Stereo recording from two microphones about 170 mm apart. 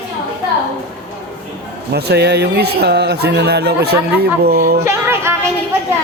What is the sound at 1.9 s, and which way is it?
Speech, 75° right (ahead or behind).